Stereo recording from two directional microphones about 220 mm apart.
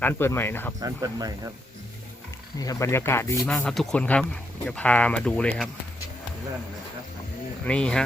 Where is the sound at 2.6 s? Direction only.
15° left (ahead or behind).